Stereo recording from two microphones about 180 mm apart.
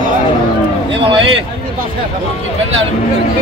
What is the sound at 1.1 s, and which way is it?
Speech, 30° right (ahead or behind).